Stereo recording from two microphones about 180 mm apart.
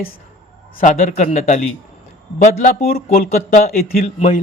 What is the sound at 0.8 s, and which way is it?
Speech, 45° left (ahead or behind).